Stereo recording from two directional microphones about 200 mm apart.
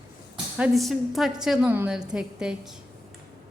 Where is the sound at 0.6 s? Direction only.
Centre (ahead or behind).